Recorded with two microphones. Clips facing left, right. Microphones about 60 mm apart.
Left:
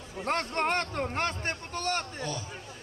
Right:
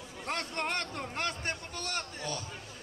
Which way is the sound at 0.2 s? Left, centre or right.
Left.